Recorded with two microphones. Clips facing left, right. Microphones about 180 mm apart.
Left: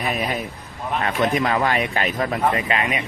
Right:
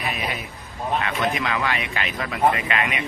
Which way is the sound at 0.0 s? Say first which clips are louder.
Left 4 dB; 40° left (ahead or behind).